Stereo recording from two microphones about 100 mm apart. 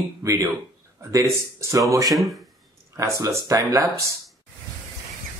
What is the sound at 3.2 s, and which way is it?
Speech, 35° right (ahead or behind).